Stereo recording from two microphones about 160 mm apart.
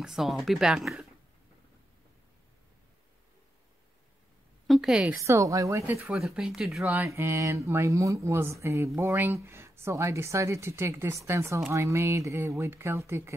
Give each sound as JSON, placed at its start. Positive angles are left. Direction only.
{"t": 0.0, "sound": "speech", "side_deg": 0}
{"t": 4.6, "sound": "a woman's voice", "side_deg": 0}
{"t": 5.2, "sound": "speech", "side_deg": -20}
{"t": 6.0, "sound": "speech", "side_deg": -5}
{"t": 6.8, "sound": "speech", "side_deg": -15}